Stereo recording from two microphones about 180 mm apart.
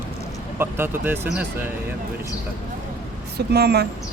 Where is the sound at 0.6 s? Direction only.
10° right (ahead or behind).